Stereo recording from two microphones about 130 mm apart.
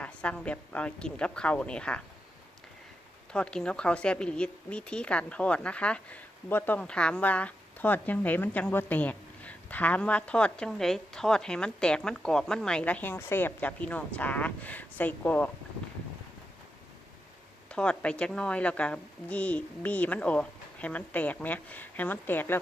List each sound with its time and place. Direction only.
0.0 s a woman's voice: 10° left (ahead or behind)
3.3 s a woman's voice: 5° left (ahead or behind)
17.7 s a woman's voice: 10° left (ahead or behind)